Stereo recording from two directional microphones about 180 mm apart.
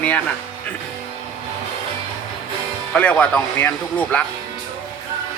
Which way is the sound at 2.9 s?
5° left (ahead or behind).